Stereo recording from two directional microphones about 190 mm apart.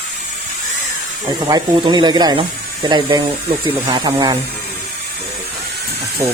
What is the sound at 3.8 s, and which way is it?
Speech, 20° right (ahead or behind).